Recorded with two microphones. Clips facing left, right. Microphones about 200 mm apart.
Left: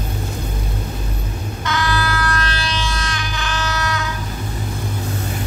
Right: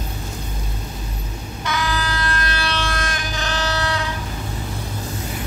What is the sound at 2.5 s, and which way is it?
Vehicle, 60° right (ahead or behind).